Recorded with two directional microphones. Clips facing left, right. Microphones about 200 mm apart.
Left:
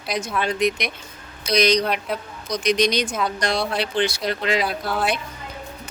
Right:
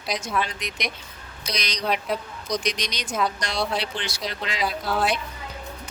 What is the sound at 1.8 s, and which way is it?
Speech, centre (ahead or behind).